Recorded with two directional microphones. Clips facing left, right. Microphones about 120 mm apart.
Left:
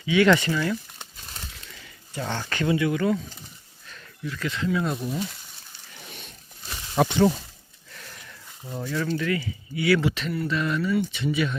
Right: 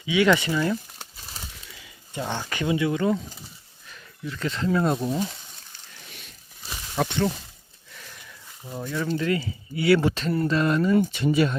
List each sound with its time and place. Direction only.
0.0 s speech: 15° right (ahead or behind)
0.9 s a sound: 5° right (ahead or behind)
2.1 s speech: 15° right (ahead or behind)
4.3 s speech: 30° right (ahead or behind)
6.9 s speech: 15° left (ahead or behind)
7.9 s a sound: 5° right (ahead or behind)
8.8 s speech: 15° right (ahead or behind)
9.1 s speech: 30° right (ahead or behind)